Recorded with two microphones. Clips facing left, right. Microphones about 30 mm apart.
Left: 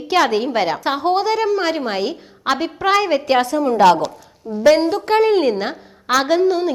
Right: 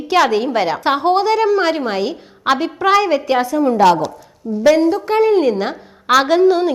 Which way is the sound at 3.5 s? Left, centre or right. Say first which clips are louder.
Right 2 dB; centre.